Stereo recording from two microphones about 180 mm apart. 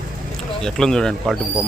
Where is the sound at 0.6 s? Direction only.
5° left (ahead or behind).